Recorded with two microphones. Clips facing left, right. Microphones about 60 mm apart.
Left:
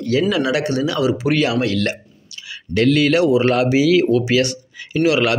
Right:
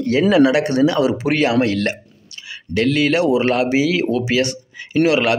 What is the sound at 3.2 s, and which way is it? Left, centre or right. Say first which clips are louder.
Speech: left 1 dB; right.